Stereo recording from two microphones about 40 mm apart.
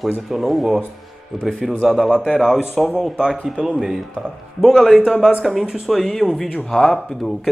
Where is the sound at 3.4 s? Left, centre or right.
Centre.